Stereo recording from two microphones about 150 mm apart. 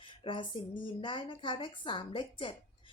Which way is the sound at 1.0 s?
35° left (ahead or behind).